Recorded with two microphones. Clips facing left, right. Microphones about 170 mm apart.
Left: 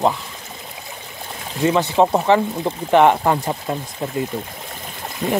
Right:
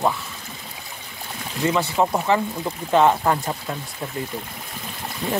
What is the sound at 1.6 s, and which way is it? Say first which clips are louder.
Speech: left 5 dB; 20° left (ahead or behind).